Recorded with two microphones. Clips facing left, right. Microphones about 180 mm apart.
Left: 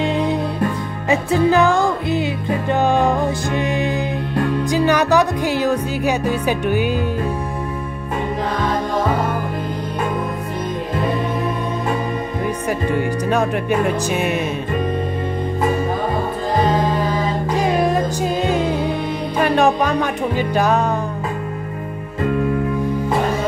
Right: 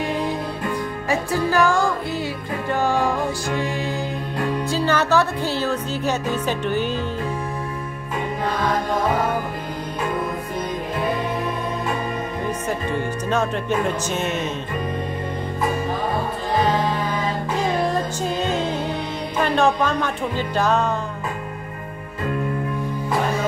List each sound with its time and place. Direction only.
0.0 s music: 25° left (ahead or behind)
13.3 s music: 15° left (ahead or behind)
17.8 s music: 10° left (ahead or behind)